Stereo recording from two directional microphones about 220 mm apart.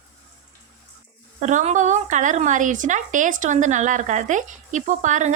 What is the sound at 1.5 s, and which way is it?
A woman's voice, 35° right (ahead or behind).